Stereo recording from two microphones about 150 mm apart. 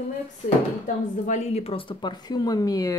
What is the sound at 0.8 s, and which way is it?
Speech, 60° left (ahead or behind).